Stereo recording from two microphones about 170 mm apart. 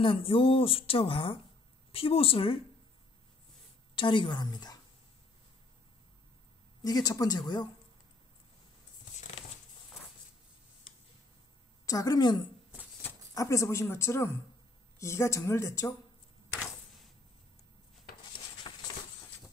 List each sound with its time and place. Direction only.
0.0 s speech: 30° left (ahead or behind)
3.9 s a woman's voice: 30° left (ahead or behind)
6.8 s a woman's voice: 25° left (ahead or behind)
11.8 s a woman's voice: 20° left (ahead or behind)